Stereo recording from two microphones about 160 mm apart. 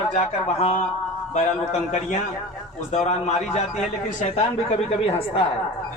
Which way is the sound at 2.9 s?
45° left (ahead or behind).